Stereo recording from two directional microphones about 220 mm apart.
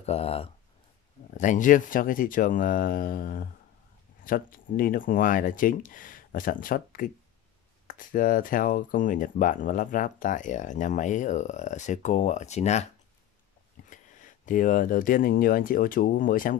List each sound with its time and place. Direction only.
0.0 s speech: 30° left (ahead or behind)
13.8 s speech: 35° left (ahead or behind)